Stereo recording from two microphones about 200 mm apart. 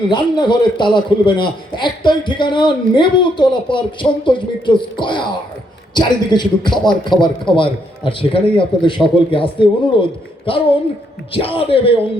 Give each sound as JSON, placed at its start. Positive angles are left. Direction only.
{"t": 0.1, "sound": "a man's voice", "side_deg": 20}